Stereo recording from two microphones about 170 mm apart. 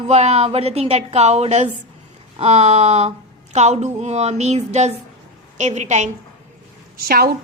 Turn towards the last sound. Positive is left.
turn(degrees=-60)  # may be behind; listen again after turning